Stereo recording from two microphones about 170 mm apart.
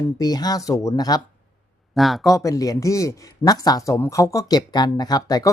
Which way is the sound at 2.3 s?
20° left (ahead or behind).